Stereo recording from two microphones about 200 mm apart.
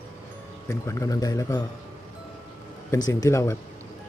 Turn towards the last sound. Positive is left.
turn(degrees=15)  # may be behind; listen again after turning